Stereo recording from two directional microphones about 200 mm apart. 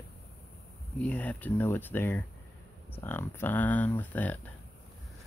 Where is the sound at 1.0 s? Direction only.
5° left (ahead or behind).